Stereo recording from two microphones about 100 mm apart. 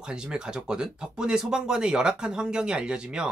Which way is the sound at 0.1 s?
10° right (ahead or behind).